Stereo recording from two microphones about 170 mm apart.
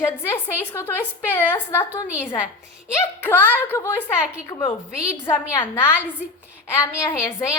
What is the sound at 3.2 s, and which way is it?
Speech, 15° left (ahead or behind).